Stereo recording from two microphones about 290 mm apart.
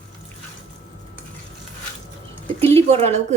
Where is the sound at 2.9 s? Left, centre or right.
Right.